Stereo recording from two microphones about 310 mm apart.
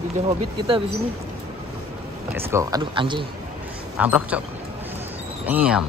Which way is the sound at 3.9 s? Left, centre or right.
Centre.